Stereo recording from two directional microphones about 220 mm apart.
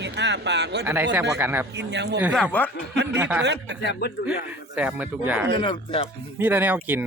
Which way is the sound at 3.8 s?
50° left (ahead or behind).